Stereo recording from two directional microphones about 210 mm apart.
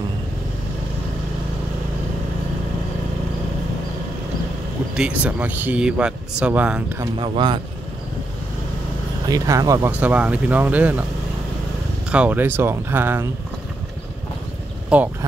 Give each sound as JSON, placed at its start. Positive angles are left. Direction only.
{"t": 4.9, "sound": "speech", "side_deg": -5}
{"t": 7.2, "sound": "a man's voice", "side_deg": -20}
{"t": 9.3, "sound": "speech", "side_deg": -15}
{"t": 12.1, "sound": "speech", "side_deg": -5}
{"t": 14.9, "sound": "speech", "side_deg": -5}